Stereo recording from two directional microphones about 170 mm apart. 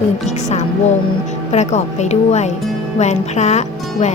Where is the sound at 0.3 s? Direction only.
45° left (ahead or behind).